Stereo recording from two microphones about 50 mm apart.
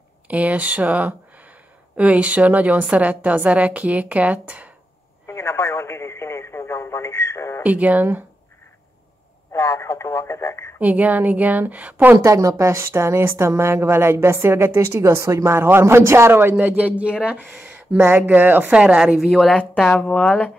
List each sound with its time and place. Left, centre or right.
0.3 s a woman's voice: right
5.2 s radio: left
7.6 s a woman's voice: right
9.5 s speech: left
10.8 s a woman's voice: right
12.2 s speech: right
15.5 s speech: right
15.8 s a man's voice: right
16.6 s a woman's voice: right
18.7 s a woman's voice: centre
19.1 s speech: centre
19.9 s speech: left